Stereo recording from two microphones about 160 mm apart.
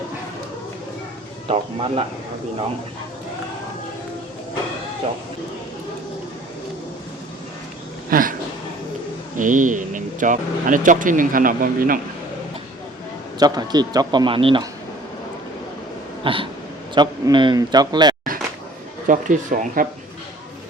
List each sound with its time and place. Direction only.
1.5 s speech: 35° right (ahead or behind)
8.1 s speech: 60° right (ahead or behind)
9.4 s speech: 55° right (ahead or behind)
13.4 s a man's voice: 25° right (ahead or behind)
16.2 s a man's voice: 35° right (ahead or behind)
19.0 s speech: 55° right (ahead or behind)